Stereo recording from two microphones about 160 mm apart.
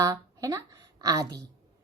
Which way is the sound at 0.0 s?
25° right (ahead or behind).